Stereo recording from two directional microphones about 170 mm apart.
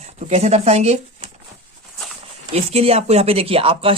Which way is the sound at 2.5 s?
35° right (ahead or behind).